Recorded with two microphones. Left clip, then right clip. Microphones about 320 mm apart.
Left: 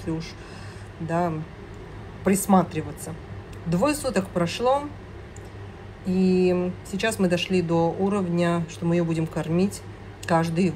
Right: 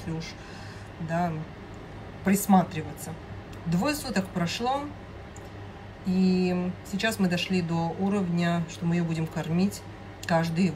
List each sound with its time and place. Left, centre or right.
1.0 s speech: centre
6.0 s speech: centre